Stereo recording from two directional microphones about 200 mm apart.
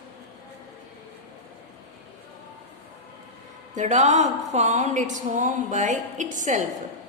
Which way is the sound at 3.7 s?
35° right (ahead or behind).